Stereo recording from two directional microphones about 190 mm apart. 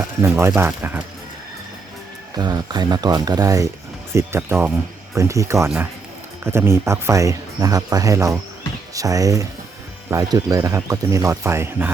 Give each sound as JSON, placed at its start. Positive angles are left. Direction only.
{"t": 0.2, "sound": "speech", "side_deg": -15}
{"t": 2.4, "sound": "speech", "side_deg": -20}